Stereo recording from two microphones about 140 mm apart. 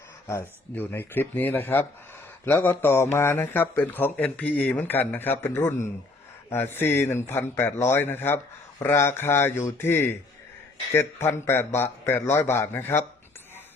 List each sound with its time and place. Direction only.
0.3 s speech: 15° left (ahead or behind)